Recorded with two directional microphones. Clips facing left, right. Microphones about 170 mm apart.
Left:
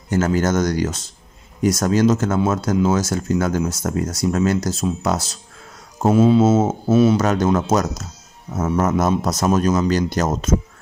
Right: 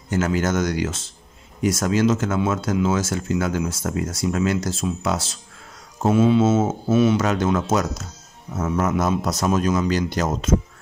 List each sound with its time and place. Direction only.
0.1 s a man's voice: 40° left (ahead or behind)